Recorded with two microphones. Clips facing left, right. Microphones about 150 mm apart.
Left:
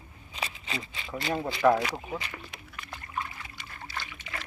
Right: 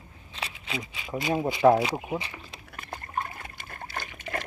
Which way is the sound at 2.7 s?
50° right (ahead or behind).